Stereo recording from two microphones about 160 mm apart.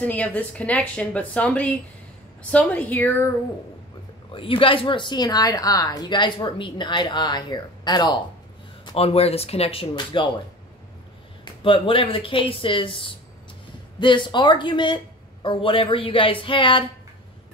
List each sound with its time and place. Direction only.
0.0 s speech: 10° left (ahead or behind)
4.3 s a woman's voice: 35° left (ahead or behind)
8.9 s speech: 40° left (ahead or behind)
11.6 s a woman's voice: 35° left (ahead or behind)